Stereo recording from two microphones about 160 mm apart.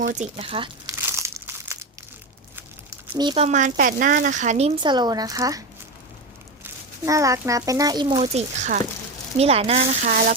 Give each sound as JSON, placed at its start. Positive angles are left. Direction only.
{"t": 0.1, "sound": "speech", "side_deg": -45}
{"t": 0.9, "sound": "crumpling", "side_deg": -20}
{"t": 3.2, "sound": "a child's voice", "side_deg": -30}
{"t": 3.4, "sound": "speech", "side_deg": -50}
{"t": 4.8, "sound": "a child's voice", "side_deg": -30}
{"t": 7.0, "sound": "a child's voice", "side_deg": -20}
{"t": 8.4, "sound": "speech", "side_deg": -50}
{"t": 9.4, "sound": "speech", "side_deg": -40}